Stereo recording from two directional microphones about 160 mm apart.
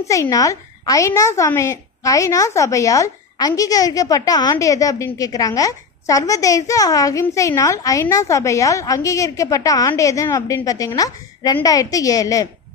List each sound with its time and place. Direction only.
0.1 s a woman's voice: 20° left (ahead or behind)